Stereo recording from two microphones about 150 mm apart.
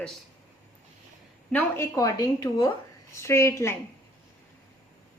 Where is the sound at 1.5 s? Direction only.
20° left (ahead or behind).